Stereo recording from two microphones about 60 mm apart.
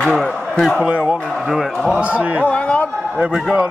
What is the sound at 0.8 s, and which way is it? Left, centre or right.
Speech, centre.